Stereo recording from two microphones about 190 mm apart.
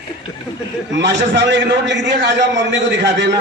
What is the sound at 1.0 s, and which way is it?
A man's voice, 65° right (ahead or behind).